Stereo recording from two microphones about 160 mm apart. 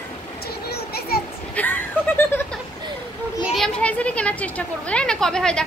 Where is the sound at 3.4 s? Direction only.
Centre (ahead or behind).